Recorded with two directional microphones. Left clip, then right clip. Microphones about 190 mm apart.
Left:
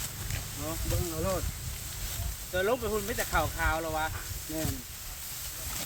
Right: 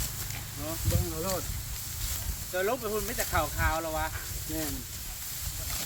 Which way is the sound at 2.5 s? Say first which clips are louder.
Left 1 dB; 15° left (ahead or behind).